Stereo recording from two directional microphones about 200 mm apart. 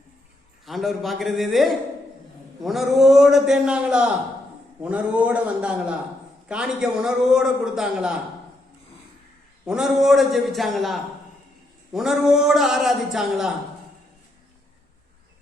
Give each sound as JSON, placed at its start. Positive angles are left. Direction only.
{"t": 0.6, "sound": "a man's voice", "side_deg": 0}
{"t": 9.6, "sound": "a man's voice", "side_deg": -5}